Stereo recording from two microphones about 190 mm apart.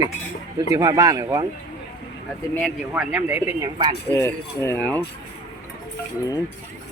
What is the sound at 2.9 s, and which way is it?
Speech, 5° right (ahead or behind).